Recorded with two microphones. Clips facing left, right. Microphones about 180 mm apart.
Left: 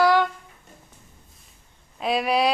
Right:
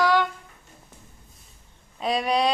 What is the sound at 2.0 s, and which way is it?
Speech, 5° left (ahead or behind).